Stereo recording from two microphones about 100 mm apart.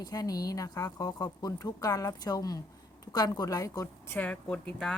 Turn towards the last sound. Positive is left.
turn(degrees=10)  # may be behind; listen again after turning